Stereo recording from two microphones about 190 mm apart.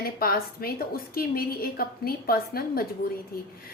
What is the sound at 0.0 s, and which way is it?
A woman's voice, 50° left (ahead or behind).